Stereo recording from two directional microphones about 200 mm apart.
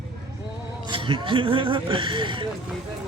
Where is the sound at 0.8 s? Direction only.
25° right (ahead or behind).